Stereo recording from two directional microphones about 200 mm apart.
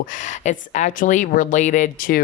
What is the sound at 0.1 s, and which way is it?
Speech, 40° left (ahead or behind).